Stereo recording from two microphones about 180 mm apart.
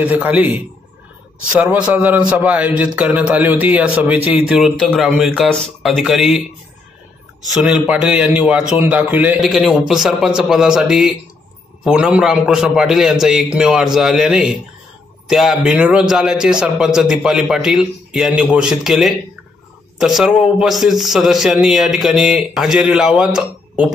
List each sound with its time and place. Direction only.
0.0 s a man's voice: 10° right (ahead or behind)
7.6 s a man's voice: 5° right (ahead or behind)